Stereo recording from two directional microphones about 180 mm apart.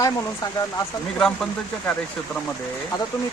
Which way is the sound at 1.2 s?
5° left (ahead or behind).